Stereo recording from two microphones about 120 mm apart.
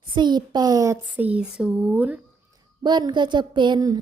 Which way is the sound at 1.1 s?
10° right (ahead or behind).